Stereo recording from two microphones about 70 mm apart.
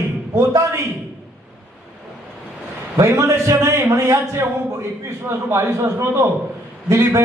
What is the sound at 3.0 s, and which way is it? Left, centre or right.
A man's voice, right.